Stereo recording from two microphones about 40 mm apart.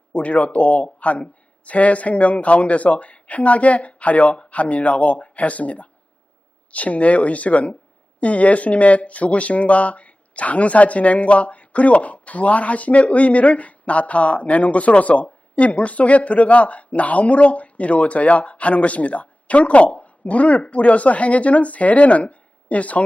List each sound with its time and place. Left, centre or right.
0.1 s speech: left